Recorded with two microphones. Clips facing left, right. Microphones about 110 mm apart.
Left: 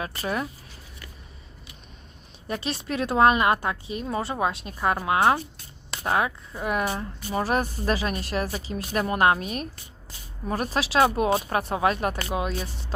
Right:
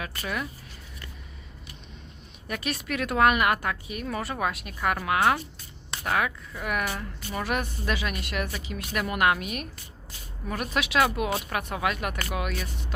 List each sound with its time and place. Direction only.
0.0 s speech: 30° left (ahead or behind)
2.5 s speech: 30° left (ahead or behind)